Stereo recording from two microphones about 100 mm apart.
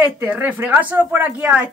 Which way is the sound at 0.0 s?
20° right (ahead or behind).